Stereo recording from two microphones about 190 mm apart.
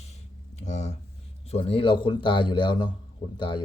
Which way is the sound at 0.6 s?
40° left (ahead or behind).